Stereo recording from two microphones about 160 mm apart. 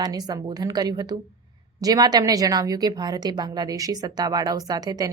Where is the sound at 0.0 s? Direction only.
25° right (ahead or behind).